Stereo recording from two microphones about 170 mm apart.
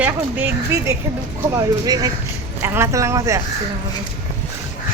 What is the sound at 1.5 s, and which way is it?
A woman's voice, 20° right (ahead or behind).